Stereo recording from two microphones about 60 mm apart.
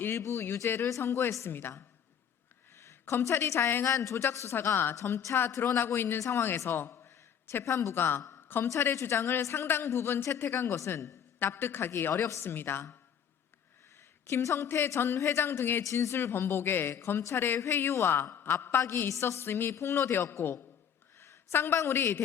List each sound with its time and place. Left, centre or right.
0.2 s a woman's voice: left
2.7 s speech: left
3.8 s a woman's voice: left
4.9 s a woman's voice: left
8.6 s a woman's voice: left
12.4 s speech: left
14.3 s a woman's voice: left
15.8 s a woman's voice: left